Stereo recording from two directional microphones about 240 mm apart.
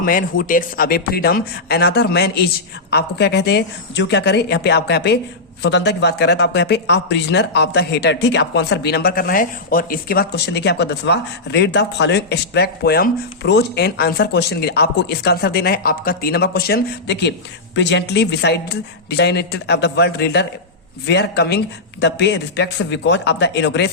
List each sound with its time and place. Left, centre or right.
0.0 s speech: left